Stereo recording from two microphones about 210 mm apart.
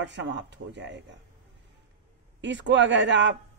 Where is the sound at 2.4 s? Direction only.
60° right (ahead or behind).